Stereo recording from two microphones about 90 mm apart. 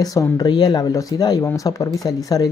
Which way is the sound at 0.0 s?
45° left (ahead or behind).